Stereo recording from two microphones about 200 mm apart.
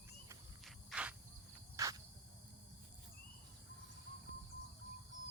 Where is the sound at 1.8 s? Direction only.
15° right (ahead or behind).